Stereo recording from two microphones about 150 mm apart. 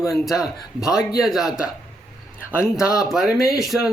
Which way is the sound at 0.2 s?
Centre (ahead or behind).